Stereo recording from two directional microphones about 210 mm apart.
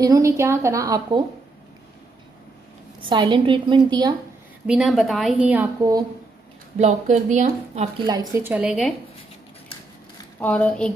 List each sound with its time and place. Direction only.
0.0 s a woman's voice: 15° right (ahead or behind)
3.0 s a woman's voice: 20° right (ahead or behind)
4.6 s a woman's voice: centre (ahead or behind)
6.8 s a woman's voice: 35° right (ahead or behind)
8.1 s a woman's voice: 15° right (ahead or behind)
10.4 s a woman's voice: 5° left (ahead or behind)